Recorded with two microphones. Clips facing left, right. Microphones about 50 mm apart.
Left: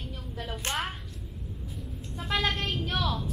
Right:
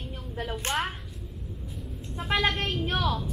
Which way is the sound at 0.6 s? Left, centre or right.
Centre.